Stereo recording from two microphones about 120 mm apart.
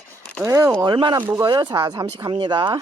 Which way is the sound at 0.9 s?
40° right (ahead or behind).